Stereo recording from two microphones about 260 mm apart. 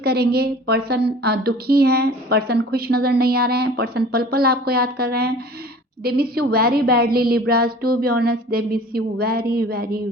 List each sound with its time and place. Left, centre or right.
0.0 s a woman's voice: right